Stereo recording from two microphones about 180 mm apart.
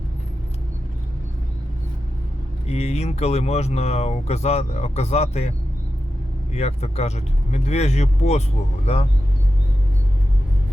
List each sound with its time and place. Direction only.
2.6 s speech: 35° left (ahead or behind)
6.5 s speech: 35° left (ahead or behind)